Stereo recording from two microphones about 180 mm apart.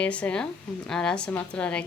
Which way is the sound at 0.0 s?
5° left (ahead or behind).